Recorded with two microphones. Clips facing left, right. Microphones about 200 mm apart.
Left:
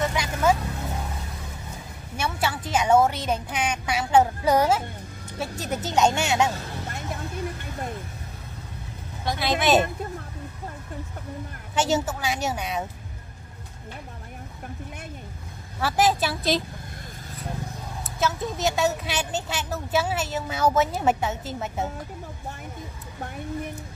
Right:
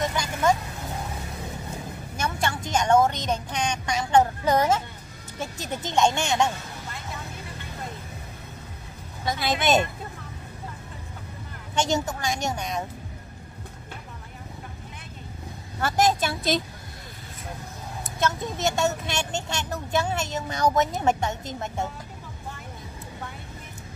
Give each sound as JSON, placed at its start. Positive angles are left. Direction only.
{"t": 0.0, "sound": "vehicle", "side_deg": 5}
{"t": 2.1, "sound": "a woman's voice", "side_deg": 5}
{"t": 5.6, "sound": "speech", "side_deg": 40}
{"t": 5.9, "sound": "speech", "side_deg": 5}
{"t": 9.2, "sound": "speech", "side_deg": 0}
{"t": 11.7, "sound": "speech", "side_deg": 5}
{"t": 15.8, "sound": "speech", "side_deg": 5}
{"t": 18.0, "sound": "speech", "side_deg": 0}